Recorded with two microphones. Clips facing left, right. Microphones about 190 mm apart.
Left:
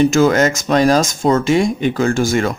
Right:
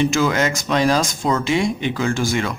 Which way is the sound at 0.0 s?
45° left (ahead or behind).